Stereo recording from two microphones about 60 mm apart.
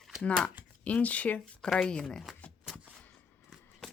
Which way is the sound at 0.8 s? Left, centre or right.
Left.